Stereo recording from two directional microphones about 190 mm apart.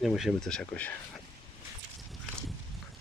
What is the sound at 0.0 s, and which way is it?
Speech, centre (ahead or behind).